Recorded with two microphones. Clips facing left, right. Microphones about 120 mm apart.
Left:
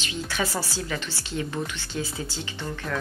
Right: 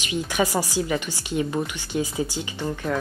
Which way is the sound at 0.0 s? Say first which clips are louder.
Right 5 dB; 15° right (ahead or behind).